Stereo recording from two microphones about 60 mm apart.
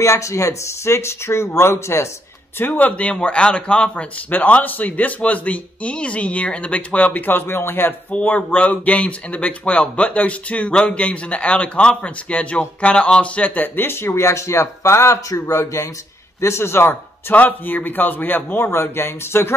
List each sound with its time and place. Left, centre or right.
0.0 s speech: left
2.8 s a man's voice: left
8.1 s a man's voice: left
13.7 s speech: left
16.8 s speech: left